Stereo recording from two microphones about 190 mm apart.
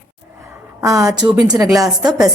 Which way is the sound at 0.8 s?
20° right (ahead or behind).